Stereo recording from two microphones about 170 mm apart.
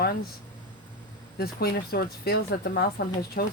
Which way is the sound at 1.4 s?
65° left (ahead or behind).